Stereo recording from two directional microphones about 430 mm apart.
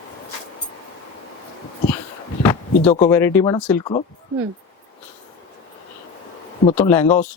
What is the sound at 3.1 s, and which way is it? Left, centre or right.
Speech, centre.